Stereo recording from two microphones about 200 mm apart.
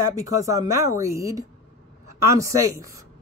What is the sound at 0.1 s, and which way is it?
Speech, 15° right (ahead or behind).